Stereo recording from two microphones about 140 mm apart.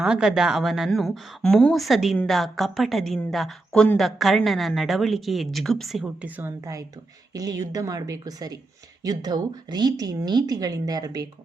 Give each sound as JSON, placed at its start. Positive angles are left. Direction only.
{"t": 0.0, "sound": "speech", "side_deg": -5}
{"t": 6.2, "sound": "a woman's voice", "side_deg": -10}
{"t": 7.3, "sound": "speech", "side_deg": -25}